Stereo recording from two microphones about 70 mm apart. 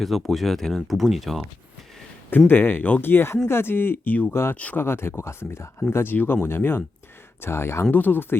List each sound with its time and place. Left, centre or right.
0.0 s speech: centre
2.5 s speech: left